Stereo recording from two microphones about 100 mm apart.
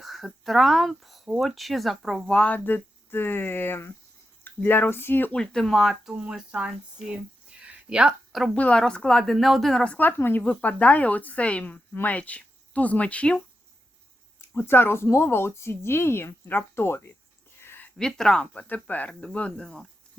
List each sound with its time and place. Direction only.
0.0 s a woman's voice: centre (ahead or behind); by 5.4 s 20° left (ahead or behind)
5.4 s speech: 10° left (ahead or behind); by 7.2 s 10° right (ahead or behind)
7.6 s a sound: 10° right (ahead or behind)
8.5 s speech: 10° left (ahead or behind)
14.7 s a woman's voice: 20° left (ahead or behind)
17.6 s a sound: 20° left (ahead or behind)
17.9 s speech: 5° left (ahead or behind)